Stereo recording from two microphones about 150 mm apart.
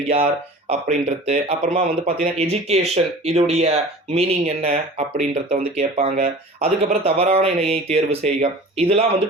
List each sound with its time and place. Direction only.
0.7 s speech: 45° right (ahead or behind)